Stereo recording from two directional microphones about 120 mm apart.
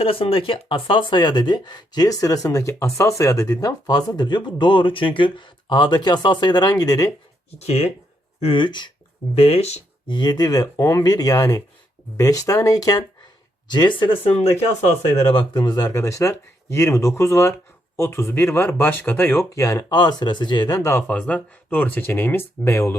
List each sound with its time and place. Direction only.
0.0 s speech: 50° left (ahead or behind); by 7.1 s 30° left (ahead or behind)
7.6 s speech: 60° left (ahead or behind)
8.4 s speech: 50° left (ahead or behind)
9.3 s speech: 60° left (ahead or behind)
10.1 s speech: 35° left (ahead or behind)
15.2 s speech: 50° left (ahead or behind)
15.5 s speech: 35° left (ahead or behind)
20.0 s speech: 35° left (ahead or behind)
21.1 s speech: 10° left (ahead or behind)